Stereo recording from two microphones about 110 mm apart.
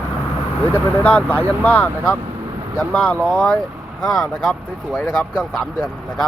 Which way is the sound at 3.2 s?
10° left (ahead or behind).